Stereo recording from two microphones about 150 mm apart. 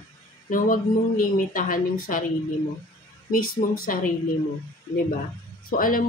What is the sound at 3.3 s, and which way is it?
Speech, 75° left (ahead or behind).